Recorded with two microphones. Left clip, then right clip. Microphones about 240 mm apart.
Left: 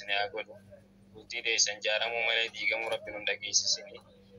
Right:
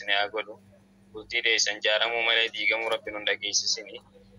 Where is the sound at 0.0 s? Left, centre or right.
Right.